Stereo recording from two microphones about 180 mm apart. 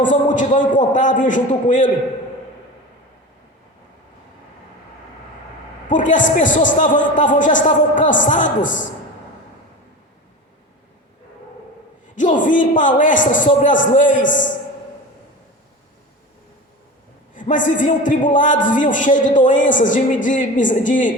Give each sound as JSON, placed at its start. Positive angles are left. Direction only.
{"t": 0.0, "sound": "a man's voice", "side_deg": 45}
{"t": 5.9, "sound": "a man's voice", "side_deg": 45}
{"t": 12.1, "sound": "a man's voice", "side_deg": 45}
{"t": 17.3, "sound": "a man's voice", "side_deg": 45}